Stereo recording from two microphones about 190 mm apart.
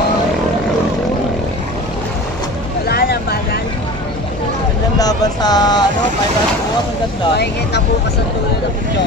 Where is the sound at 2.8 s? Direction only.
55° left (ahead or behind).